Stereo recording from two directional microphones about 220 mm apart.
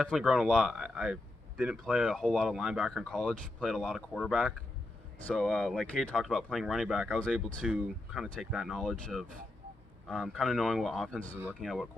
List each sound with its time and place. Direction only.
0.0 s a man's voice: centre (ahead or behind)